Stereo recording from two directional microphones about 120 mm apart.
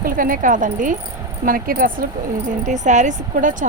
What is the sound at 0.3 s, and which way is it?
Speech, 90° right.